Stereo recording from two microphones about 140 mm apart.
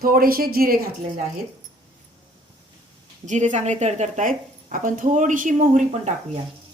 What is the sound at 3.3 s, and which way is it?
A woman's voice, 60° right (ahead or behind).